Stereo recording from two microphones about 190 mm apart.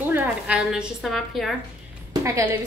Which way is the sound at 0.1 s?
5° right (ahead or behind).